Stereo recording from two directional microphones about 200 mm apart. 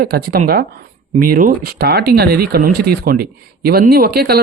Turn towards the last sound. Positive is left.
turn(degrees=-50)  # may be behind; listen again after turning